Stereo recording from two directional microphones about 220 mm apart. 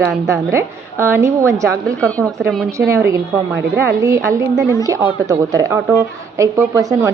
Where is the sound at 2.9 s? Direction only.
15° right (ahead or behind).